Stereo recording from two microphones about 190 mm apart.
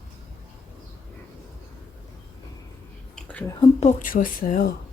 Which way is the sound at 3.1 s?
5° left (ahead or behind).